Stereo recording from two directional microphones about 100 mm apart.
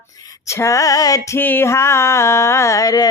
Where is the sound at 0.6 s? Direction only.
35° left (ahead or behind).